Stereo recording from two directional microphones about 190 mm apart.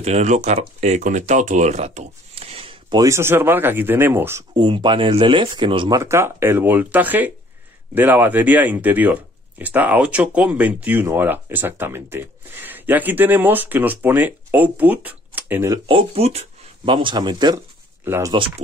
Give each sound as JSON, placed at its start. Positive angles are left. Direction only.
{"t": 0.0, "sound": "speech", "side_deg": -35}
{"t": 4.6, "sound": "speech", "side_deg": -25}
{"t": 15.9, "sound": "speech", "side_deg": -30}